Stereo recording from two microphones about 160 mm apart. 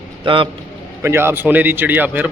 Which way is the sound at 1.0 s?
15° right (ahead or behind).